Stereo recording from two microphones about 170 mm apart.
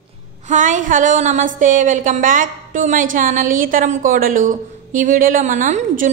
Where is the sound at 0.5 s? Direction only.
50° right (ahead or behind).